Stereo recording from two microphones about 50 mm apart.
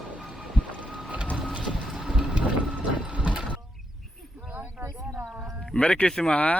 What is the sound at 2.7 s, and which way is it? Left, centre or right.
Vehicle, right.